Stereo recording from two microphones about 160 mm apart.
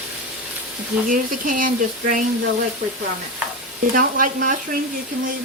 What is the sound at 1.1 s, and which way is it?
Speech, 55° right (ahead or behind).